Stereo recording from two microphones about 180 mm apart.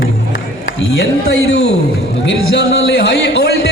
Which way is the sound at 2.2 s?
75° left (ahead or behind).